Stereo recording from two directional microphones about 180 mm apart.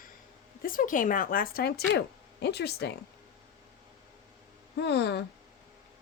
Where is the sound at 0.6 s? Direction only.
50° left (ahead or behind); by 3.0 s 65° left (ahead or behind).